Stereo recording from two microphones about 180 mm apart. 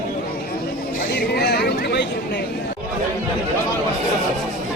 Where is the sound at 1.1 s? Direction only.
65° left (ahead or behind).